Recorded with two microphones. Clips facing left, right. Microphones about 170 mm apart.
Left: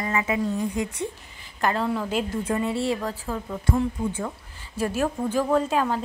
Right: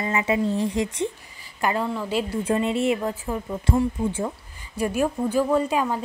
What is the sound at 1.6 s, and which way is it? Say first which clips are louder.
Speech: even; 10° right (ahead or behind).